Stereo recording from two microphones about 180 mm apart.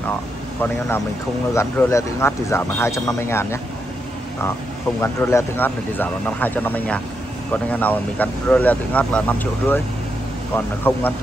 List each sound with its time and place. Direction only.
0.6 s speech: 15° left (ahead or behind)
5.0 s speech: 15° left (ahead or behind)